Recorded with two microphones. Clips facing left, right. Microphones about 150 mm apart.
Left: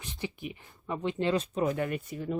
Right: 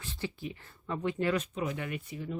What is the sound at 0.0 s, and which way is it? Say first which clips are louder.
Speech: even; 15° left (ahead or behind).